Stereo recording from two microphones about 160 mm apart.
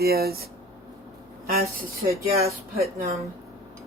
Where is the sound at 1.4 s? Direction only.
70° right (ahead or behind).